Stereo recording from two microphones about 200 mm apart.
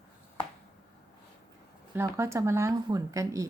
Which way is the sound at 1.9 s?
15° right (ahead or behind).